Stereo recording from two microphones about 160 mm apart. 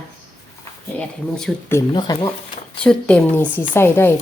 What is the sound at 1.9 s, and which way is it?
Speech, 25° left (ahead or behind).